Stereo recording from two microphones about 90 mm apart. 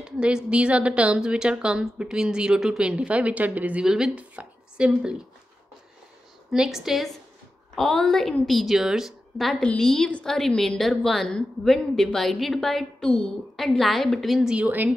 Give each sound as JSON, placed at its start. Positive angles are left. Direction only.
{"t": 0.0, "sound": "a woman's voice", "side_deg": -10}
{"t": 6.5, "sound": "a woman's voice", "side_deg": -5}
{"t": 14.5, "sound": "a woman's voice", "side_deg": -15}